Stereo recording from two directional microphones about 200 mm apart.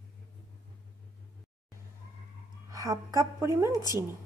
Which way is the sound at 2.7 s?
15° right (ahead or behind).